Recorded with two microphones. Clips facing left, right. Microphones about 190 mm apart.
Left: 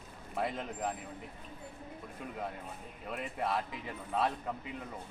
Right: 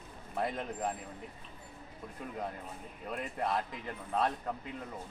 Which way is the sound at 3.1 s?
5° left (ahead or behind).